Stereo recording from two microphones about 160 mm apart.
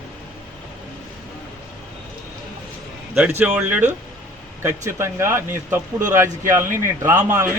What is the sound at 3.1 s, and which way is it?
A man's voice, 10° right (ahead or behind).